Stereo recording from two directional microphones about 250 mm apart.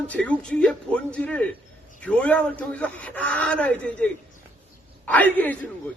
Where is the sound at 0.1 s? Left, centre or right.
Centre.